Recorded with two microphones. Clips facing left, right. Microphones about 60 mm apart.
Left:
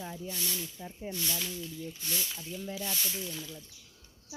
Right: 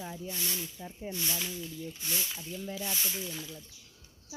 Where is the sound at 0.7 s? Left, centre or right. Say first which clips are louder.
Even; centre.